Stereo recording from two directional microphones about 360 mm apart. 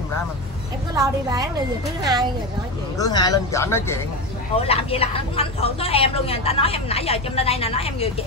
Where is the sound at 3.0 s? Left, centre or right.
Centre.